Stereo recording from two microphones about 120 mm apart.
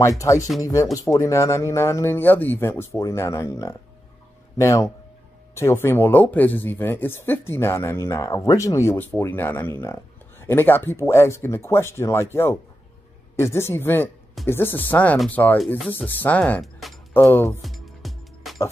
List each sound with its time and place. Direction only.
0.0 s speech: 25° left (ahead or behind)
17.6 s music: centre (ahead or behind)